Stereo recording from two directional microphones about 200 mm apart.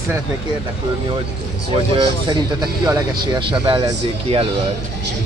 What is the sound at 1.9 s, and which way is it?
Speech, 25° right (ahead or behind).